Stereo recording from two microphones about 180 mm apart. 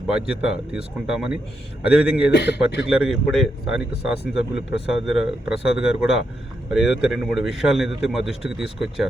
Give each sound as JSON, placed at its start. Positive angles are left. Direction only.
{"t": 0.1, "sound": "speech", "side_deg": -5}
{"t": 2.3, "sound": "a man's voice", "side_deg": 70}
{"t": 2.8, "sound": "speech", "side_deg": -5}